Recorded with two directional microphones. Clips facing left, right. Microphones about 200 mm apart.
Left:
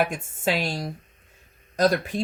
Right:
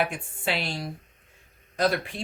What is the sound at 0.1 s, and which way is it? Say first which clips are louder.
Speech: left 4 dB; 45° left (ahead or behind).